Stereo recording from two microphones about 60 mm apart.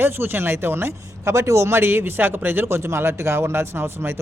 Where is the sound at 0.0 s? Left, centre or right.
Right.